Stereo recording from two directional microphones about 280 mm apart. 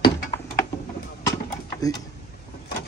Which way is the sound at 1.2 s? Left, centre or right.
Centre.